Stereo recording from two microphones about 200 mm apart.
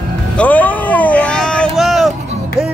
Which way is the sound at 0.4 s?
10° left (ahead or behind).